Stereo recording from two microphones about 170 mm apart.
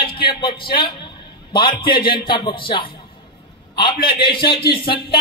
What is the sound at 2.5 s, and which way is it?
Speech, 30° left (ahead or behind).